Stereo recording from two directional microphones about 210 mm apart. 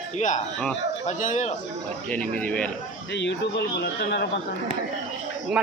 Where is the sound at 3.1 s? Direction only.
55° left (ahead or behind).